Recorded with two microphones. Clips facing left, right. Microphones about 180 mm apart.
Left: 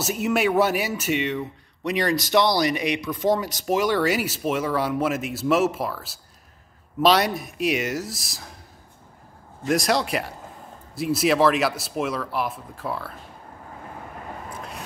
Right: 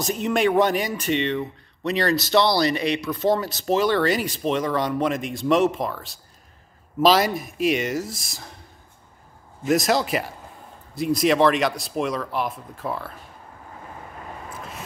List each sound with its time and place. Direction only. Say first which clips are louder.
0.0 s a man's voice: right 1 dB; 5° left (ahead or behind)
9.7 s speech: right 2 dB; centre (ahead or behind)